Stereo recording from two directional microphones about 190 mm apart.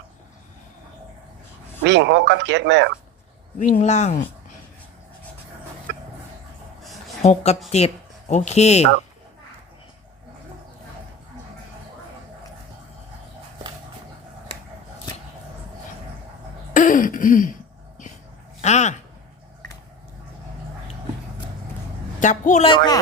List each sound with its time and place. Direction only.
1.8 s speech: 70° right (ahead or behind)
3.6 s speech: 35° left (ahead or behind)
7.2 s speech: 35° left (ahead or behind)
16.7 s throat clearing: 45° left (ahead or behind)
18.6 s speech: 35° left (ahead or behind)
22.2 s speech: 40° left (ahead or behind)
22.7 s speech: 25° left (ahead or behind)